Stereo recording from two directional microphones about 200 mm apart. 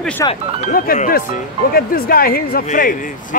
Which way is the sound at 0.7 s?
45° left (ahead or behind).